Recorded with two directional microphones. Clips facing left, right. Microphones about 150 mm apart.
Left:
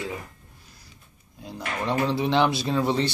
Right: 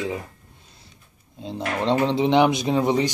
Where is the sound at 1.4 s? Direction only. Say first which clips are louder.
Right 5 dB; 25° right (ahead or behind).